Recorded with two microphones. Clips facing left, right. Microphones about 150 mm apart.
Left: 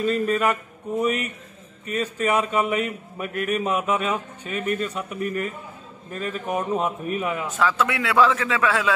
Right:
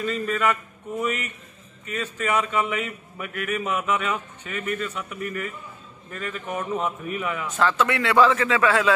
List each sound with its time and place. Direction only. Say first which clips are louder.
0.0 s speech: left 3 dB; 35° left (ahead or behind)
7.5 s a man's voice: right 2 dB; centre (ahead or behind)